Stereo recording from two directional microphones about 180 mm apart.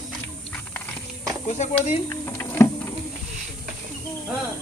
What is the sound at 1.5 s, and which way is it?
Speech, 35° left (ahead or behind).